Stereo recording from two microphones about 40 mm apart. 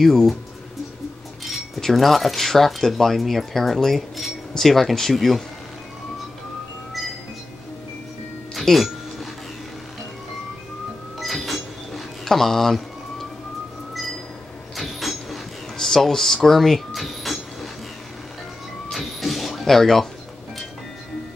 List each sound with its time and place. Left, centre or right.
0.0 s speech: centre
1.8 s speech: centre
8.5 s music: centre
11.1 s a sound: centre
14.8 s vehicle: centre
15.8 s speech: centre
16.4 s a sound: centre
18.9 s vehicle: centre